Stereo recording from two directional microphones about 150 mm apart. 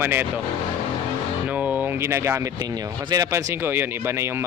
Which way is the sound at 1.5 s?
10° right (ahead or behind).